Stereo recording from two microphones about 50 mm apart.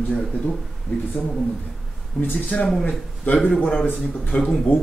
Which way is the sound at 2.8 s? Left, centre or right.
Left.